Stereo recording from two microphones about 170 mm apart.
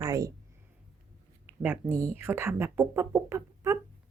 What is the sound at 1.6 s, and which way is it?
Speech, 15° right (ahead or behind).